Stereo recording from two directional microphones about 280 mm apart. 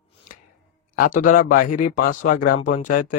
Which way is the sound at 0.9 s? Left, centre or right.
Left.